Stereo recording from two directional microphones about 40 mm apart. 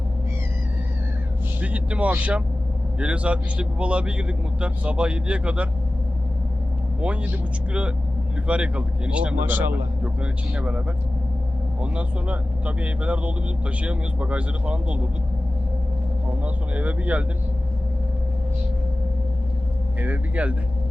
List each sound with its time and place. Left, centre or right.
1.6 s speech: right
7.0 s speech: right
9.5 s a man's voice: right
10.0 s speech: right
16.4 s speech: right
20.0 s speech: right